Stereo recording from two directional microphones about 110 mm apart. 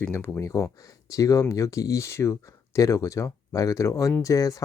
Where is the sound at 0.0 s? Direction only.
20° left (ahead or behind).